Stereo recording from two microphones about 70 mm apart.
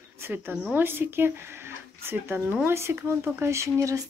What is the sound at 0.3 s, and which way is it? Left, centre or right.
Speech, right.